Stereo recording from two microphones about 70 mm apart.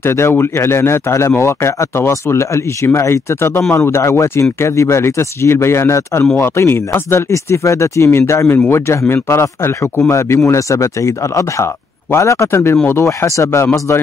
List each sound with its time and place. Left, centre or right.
0.0 s speech: left